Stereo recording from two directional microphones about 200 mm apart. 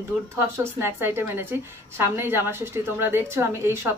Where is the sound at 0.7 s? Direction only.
10° right (ahead or behind).